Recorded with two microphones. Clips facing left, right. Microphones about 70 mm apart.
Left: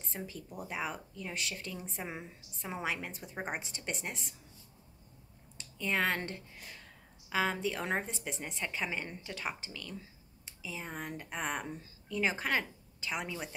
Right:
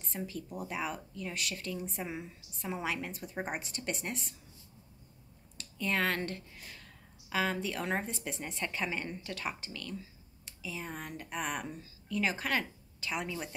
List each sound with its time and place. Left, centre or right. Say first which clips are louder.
0.1 s speech: right 3 dB; centre
5.6 s speech: even; left